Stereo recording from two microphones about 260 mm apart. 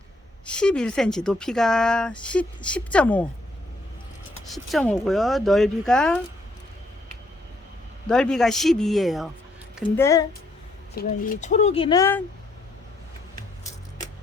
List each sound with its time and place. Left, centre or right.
0.4 s speech: centre
4.4 s speech: centre
8.0 s speech: centre
9.9 s speech: centre
10.9 s speech: left; by 12.2 s centre